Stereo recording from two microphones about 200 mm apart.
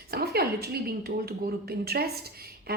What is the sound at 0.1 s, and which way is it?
A woman's voice, 50° right (ahead or behind).